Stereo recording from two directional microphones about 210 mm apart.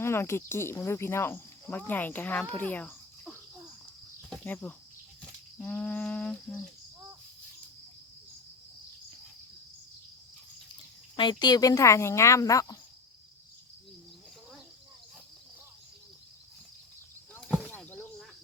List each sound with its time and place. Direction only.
0.0 s speech: 10° left (ahead or behind)
4.3 s cricket: 10° left (ahead or behind)
5.5 s speech: 10° left (ahead or behind)
11.2 s speech: 20° left (ahead or behind)
17.5 s a sound: 5° right (ahead or behind)
17.8 s a sound: 10° left (ahead or behind)